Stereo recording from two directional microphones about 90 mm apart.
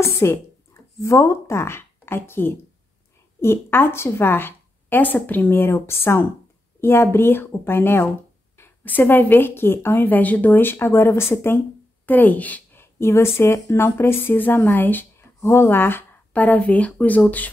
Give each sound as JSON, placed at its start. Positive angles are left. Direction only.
{"t": 0.0, "sound": "a woman's voice", "side_deg": 30}